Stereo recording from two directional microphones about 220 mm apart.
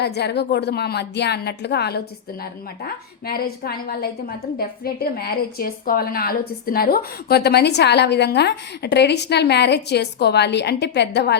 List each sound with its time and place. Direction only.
0.0 s a woman's voice: 50° left (ahead or behind)